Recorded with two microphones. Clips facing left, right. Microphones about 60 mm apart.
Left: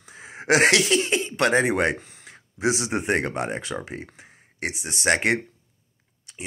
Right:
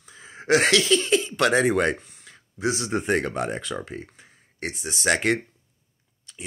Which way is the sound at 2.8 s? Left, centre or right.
Centre.